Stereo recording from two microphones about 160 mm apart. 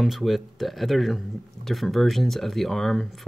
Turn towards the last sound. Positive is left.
turn(degrees=5)  # may be behind; listen again after turning